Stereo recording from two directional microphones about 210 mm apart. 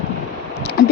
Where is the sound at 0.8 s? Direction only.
50° left (ahead or behind).